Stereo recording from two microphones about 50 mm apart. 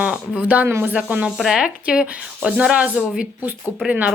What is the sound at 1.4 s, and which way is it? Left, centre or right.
Speech, centre.